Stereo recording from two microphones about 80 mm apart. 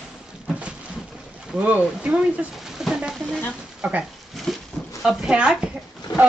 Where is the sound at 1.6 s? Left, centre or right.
Centre.